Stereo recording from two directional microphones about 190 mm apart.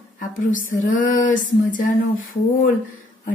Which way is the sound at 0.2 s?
45° left (ahead or behind).